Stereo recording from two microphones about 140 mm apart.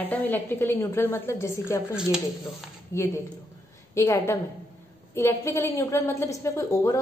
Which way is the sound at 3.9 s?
20° left (ahead or behind).